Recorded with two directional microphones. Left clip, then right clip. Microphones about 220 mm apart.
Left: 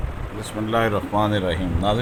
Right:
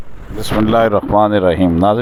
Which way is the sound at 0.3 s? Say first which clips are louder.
Right 10 dB; 40° right (ahead or behind).